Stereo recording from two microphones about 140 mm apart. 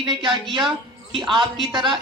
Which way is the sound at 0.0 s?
35° right (ahead or behind).